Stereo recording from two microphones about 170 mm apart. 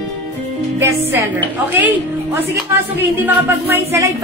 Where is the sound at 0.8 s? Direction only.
15° right (ahead or behind).